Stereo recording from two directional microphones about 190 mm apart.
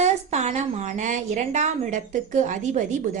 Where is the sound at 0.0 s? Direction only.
35° right (ahead or behind).